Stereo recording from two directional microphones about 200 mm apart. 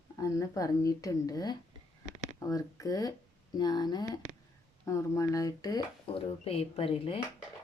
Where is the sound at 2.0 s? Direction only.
35° right (ahead or behind).